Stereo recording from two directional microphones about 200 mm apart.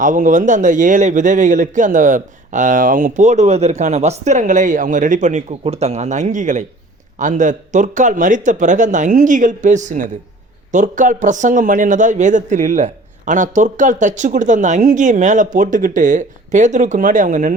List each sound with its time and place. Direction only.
0.0 s a man's voice: 40° right (ahead or behind)